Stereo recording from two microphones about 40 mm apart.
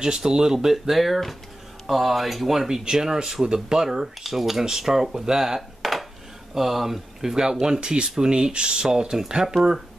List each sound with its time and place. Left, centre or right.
0.0 s speech: centre